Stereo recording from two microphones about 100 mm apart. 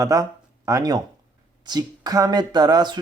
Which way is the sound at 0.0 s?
35° right (ahead or behind).